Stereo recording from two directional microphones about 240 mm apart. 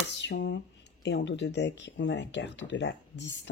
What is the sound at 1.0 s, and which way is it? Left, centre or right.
Speech, left.